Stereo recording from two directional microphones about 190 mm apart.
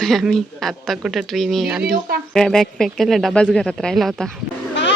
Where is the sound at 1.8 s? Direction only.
50° right (ahead or behind).